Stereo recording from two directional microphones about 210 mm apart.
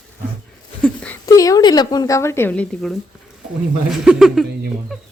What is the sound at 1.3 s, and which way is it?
Speech, 15° left (ahead or behind).